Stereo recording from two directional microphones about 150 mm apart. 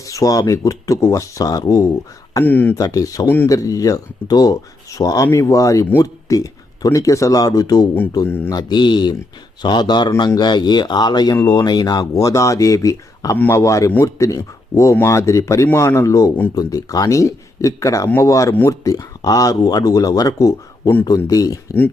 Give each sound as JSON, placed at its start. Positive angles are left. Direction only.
{"t": 0.0, "sound": "speech", "side_deg": 20}
{"t": 2.4, "sound": "speech", "side_deg": 10}
{"t": 2.7, "sound": "speech", "side_deg": 25}
{"t": 8.5, "sound": "speech", "side_deg": 30}